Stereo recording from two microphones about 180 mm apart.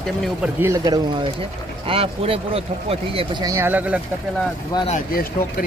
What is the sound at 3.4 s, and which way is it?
Speech, 15° right (ahead or behind).